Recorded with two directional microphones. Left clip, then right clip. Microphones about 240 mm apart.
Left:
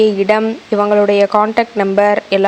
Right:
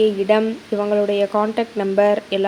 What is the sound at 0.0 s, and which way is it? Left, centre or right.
A woman's voice, centre.